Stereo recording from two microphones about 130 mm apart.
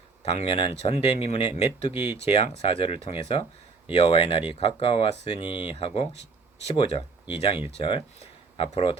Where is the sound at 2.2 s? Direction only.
50° left (ahead or behind).